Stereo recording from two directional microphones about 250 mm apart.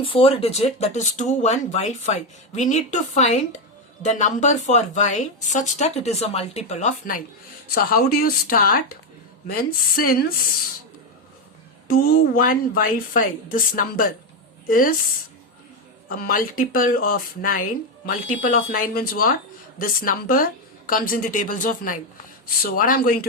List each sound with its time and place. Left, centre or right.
0.0 s speech: left
11.9 s speech: left
16.0 s speech: left